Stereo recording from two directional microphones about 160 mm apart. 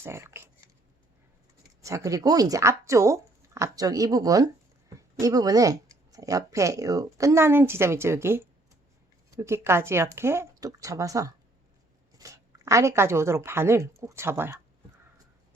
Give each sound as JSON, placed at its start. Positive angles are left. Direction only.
{"t": 0.0, "sound": "speech", "side_deg": -15}
{"t": 1.8, "sound": "a woman's voice", "side_deg": -20}